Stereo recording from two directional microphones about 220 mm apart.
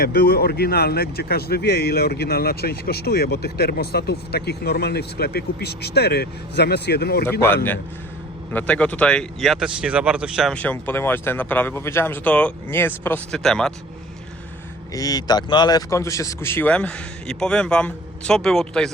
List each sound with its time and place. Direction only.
0.0 s speech: 45° left (ahead or behind)
7.3 s speech: 10° left (ahead or behind)
14.9 s speech: 15° left (ahead or behind)